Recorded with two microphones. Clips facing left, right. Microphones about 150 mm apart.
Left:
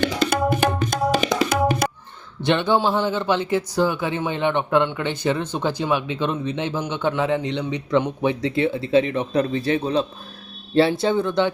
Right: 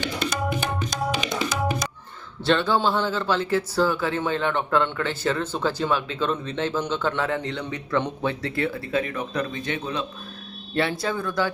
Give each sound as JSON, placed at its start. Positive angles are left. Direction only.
{"t": 0.0, "sound": "music", "side_deg": 60}
{"t": 0.9, "sound": "tabla", "side_deg": 55}
{"t": 1.3, "sound": "music", "side_deg": 60}
{"t": 2.4, "sound": "speech", "side_deg": 20}